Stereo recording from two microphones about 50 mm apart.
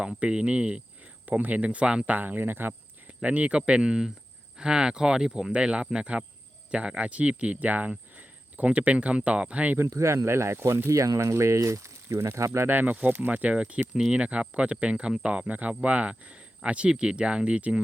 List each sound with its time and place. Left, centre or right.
0.2 s speech: right
2.0 s speech: right
3.2 s speech: right
9.9 s speech: right
12.6 s speech: right
13.6 s speech: right